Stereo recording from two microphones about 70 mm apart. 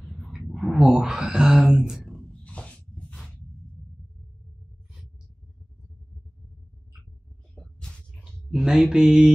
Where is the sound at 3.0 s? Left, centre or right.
Centre.